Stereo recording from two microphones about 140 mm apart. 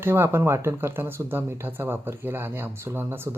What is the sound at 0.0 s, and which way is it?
Speech, 15° right (ahead or behind).